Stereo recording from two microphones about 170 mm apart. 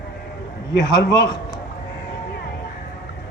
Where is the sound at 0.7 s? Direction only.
80° left.